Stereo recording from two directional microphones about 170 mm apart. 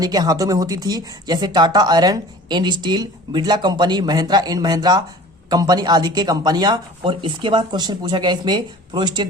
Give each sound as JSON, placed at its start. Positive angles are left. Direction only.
{"t": 0.0, "sound": "speech", "side_deg": -20}